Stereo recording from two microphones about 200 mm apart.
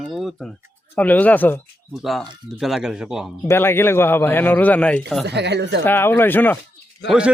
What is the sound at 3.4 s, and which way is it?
A man's voice, 10° left (ahead or behind).